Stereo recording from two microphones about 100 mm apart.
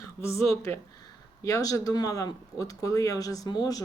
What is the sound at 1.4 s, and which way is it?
Speech, 35° left (ahead or behind).